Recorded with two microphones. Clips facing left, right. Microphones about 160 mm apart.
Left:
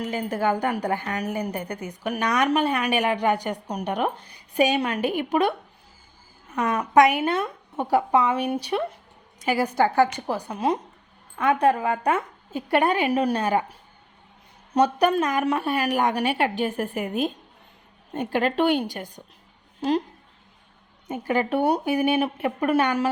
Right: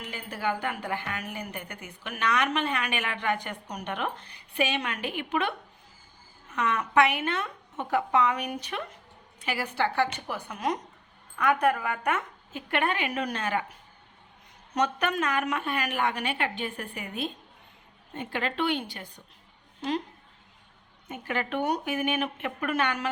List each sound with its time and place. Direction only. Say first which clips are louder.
0.0 s a woman's voice: left 8 dB; 45° left (ahead or behind)
21.1 s a woman's voice: left 8 dB; 40° left (ahead or behind)